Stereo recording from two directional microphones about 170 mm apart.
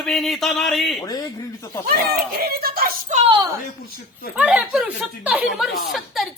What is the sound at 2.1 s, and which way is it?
Speech, 65° right (ahead or behind).